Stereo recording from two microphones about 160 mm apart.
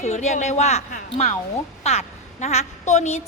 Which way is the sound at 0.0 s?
45° left (ahead or behind).